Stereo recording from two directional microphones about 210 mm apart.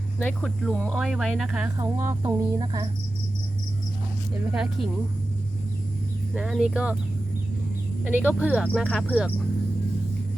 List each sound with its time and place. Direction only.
0.2 s speech: 5° left (ahead or behind); by 2.9 s 20° right (ahead or behind)
4.5 s speech: centre (ahead or behind)
6.3 s speech: 5° right (ahead or behind)
8.0 s speech: 10° right (ahead or behind)